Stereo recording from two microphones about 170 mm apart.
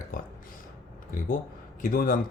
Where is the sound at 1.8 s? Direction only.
55° left (ahead or behind).